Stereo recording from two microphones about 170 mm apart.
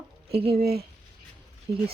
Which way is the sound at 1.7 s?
30° right (ahead or behind).